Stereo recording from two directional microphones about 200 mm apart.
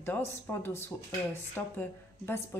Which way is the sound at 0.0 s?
10° left (ahead or behind).